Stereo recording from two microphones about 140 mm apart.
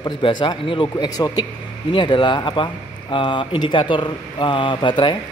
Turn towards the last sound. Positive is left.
turn(degrees=35)  # may be behind; listen again after turning